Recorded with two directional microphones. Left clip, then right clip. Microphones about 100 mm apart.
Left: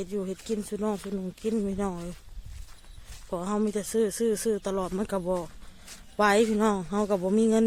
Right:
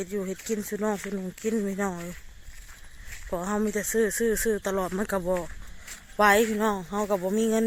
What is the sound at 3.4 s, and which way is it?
Speech, 20° left (ahead or behind).